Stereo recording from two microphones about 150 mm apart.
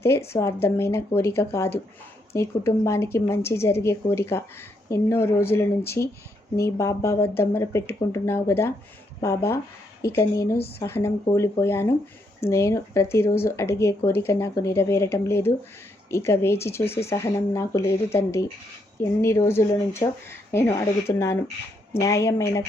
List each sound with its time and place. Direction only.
0.0 s a woman's voice: 20° left (ahead or behind)
21.1 s speech: 30° left (ahead or behind)
22.0 s a woman's voice: 20° left (ahead or behind)